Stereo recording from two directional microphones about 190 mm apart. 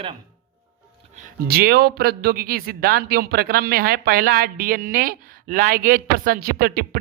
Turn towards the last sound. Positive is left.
turn(degrees=-55)  # may be behind; listen again after turning